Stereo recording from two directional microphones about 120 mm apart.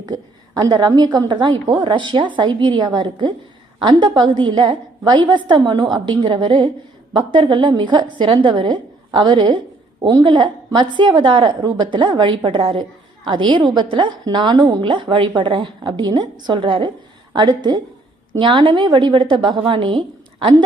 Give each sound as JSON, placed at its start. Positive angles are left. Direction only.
{"t": 0.0, "sound": "a woman's voice", "side_deg": -35}